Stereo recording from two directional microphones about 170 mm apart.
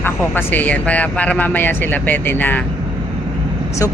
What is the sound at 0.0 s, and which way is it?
Speech, 10° left (ahead or behind).